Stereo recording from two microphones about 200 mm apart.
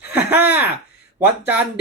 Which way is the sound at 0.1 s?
10° right (ahead or behind).